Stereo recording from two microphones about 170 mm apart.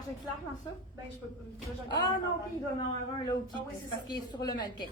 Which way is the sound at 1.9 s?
25° left (ahead or behind).